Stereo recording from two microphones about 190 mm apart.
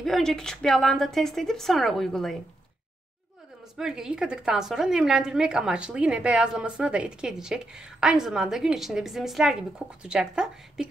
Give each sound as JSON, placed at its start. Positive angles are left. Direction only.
{"t": 0.0, "sound": "a woman's voice", "side_deg": 0}
{"t": 3.7, "sound": "a woman's voice", "side_deg": -5}